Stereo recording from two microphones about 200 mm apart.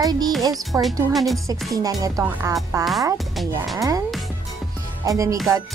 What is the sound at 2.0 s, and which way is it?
Speech, 15° right (ahead or behind).